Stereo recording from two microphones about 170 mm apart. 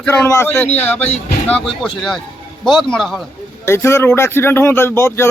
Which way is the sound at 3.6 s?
15° left (ahead or behind).